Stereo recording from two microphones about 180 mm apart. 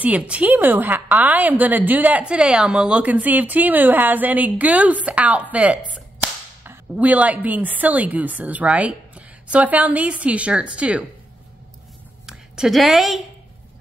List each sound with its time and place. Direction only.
0.0 s a woman's voice: 10° right (ahead or behind)
5.9 s cap gun: 10° right (ahead or behind)
12.3 s a woman's voice: 5° right (ahead or behind)